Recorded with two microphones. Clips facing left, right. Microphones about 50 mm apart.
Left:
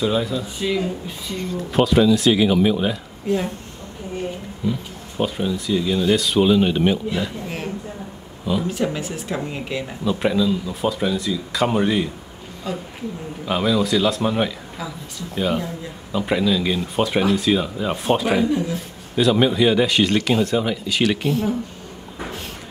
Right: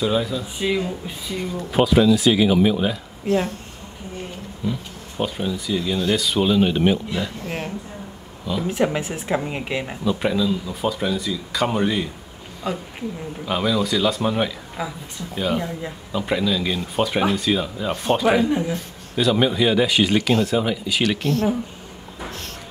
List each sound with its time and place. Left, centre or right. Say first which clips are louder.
0.0 s speech: left 1 dB; centre
0.6 s speech: right 1 dB; centre
4.6 s speech: left 2 dB; centre
8.6 s speech: right 2 dB; right
10.0 s speech: left 2 dB; centre
12.7 s speech: right 1 dB; centre
13.5 s speech: left 2 dB; centre
14.8 s speech: right 3 dB; right
15.3 s speech: left 1 dB; centre
22.2 s a sound: left 2 dB; centre